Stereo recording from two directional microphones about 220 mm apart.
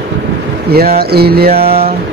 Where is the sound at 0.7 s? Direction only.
45° right (ahead or behind).